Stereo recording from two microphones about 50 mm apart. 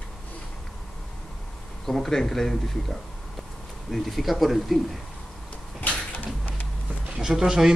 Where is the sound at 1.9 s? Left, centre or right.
Centre.